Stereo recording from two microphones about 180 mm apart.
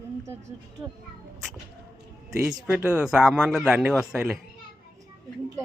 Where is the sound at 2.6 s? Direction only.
5° right (ahead or behind).